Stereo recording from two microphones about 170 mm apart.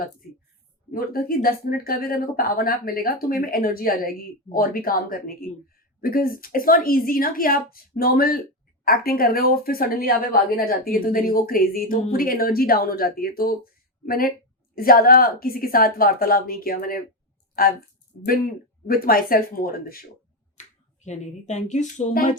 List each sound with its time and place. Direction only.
0.9 s speech: 60° left (ahead or behind)
18.9 s speech: 60° left (ahead or behind)
21.0 s speech: 45° left (ahead or behind)